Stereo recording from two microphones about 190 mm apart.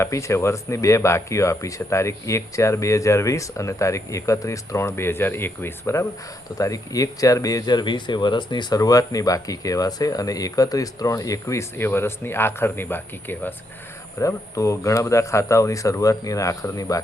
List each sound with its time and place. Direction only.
0.0 s speech: 15° left (ahead or behind)